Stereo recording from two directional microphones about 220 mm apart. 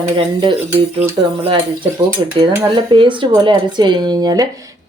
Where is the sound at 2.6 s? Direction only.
20° right (ahead or behind).